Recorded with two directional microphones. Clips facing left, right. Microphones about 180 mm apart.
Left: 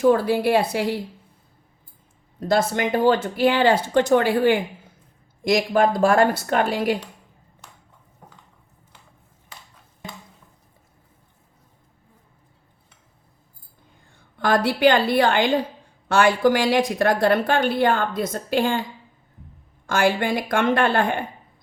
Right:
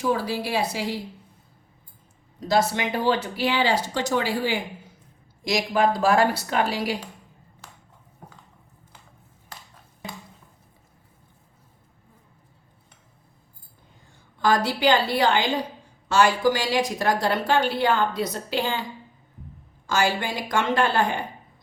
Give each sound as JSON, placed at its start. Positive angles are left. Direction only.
{"t": 0.0, "sound": "speech", "side_deg": 55}
{"t": 2.4, "sound": "a woman's voice", "side_deg": 50}
{"t": 14.3, "sound": "a woman's voice", "side_deg": 60}
{"t": 19.9, "sound": "speech", "side_deg": 55}